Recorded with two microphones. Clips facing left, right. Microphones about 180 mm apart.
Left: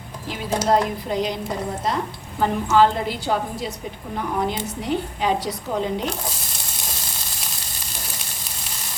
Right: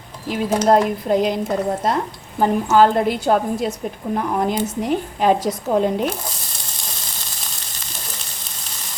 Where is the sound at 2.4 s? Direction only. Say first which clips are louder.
Right 3 dB; 50° right (ahead or behind).